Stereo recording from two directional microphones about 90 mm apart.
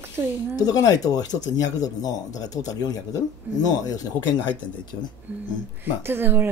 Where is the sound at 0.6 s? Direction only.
45° left (ahead or behind).